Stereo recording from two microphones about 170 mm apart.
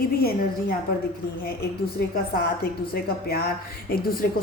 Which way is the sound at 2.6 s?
65° left (ahead or behind).